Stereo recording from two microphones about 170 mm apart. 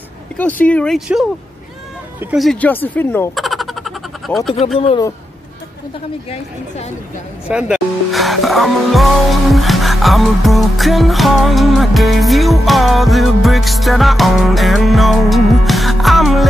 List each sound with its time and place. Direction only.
0.4 s speech: 10° left (ahead or behind)
2.3 s speech: 5° left (ahead or behind)
3.3 s a sound: centre (ahead or behind)
4.7 s a man's voice: 35° left (ahead or behind)
7.4 s speech: 5° right (ahead or behind)